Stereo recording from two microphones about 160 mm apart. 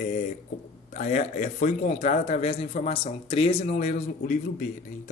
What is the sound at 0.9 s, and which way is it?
A man's voice, 50° left (ahead or behind).